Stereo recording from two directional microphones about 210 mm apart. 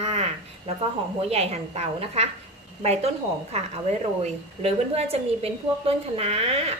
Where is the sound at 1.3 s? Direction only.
30° right (ahead or behind).